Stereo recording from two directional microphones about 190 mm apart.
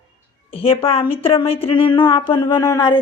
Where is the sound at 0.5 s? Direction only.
30° left (ahead or behind).